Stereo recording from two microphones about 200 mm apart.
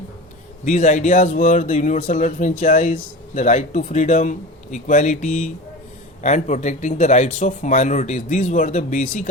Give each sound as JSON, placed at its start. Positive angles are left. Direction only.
{"t": 0.6, "sound": "speech", "side_deg": 40}